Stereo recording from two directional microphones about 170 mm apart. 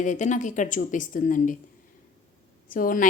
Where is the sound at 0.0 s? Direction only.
45° left (ahead or behind).